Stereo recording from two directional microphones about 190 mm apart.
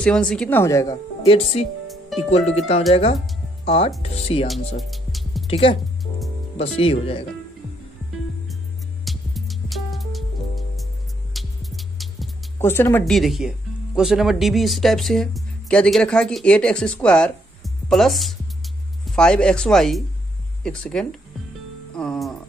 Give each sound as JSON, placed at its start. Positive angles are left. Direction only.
{"t": 0.0, "sound": "speech", "side_deg": 5}
{"t": 1.2, "sound": "speech", "side_deg": 30}
{"t": 4.5, "sound": "music", "side_deg": 0}
{"t": 5.5, "sound": "speech", "side_deg": 30}
{"t": 9.0, "sound": "music", "side_deg": 0}
{"t": 12.5, "sound": "speech", "side_deg": 10}
{"t": 13.0, "sound": "speech", "side_deg": 0}
{"t": 21.9, "sound": "music", "side_deg": 5}